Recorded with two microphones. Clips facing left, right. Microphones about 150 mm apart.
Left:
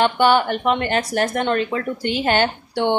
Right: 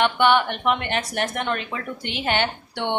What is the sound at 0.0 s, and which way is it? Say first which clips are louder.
Speech: left 3 dB; 35° left (ahead or behind).